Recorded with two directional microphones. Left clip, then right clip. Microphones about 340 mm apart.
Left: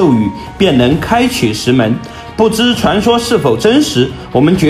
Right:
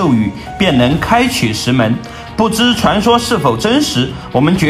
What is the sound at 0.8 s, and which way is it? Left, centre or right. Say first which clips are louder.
Speech: even; centre.